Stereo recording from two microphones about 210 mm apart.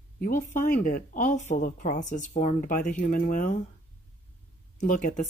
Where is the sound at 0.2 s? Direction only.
40° left (ahead or behind).